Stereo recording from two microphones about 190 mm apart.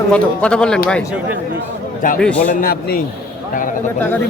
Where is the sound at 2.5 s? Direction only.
50° left (ahead or behind).